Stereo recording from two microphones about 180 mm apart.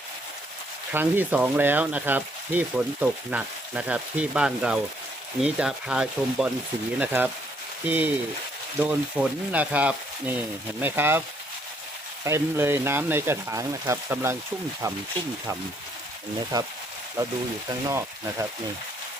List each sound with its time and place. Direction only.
0.9 s speech: 10° right (ahead or behind)
12.2 s speech: 15° right (ahead or behind)
17.8 s speech: 15° right (ahead or behind)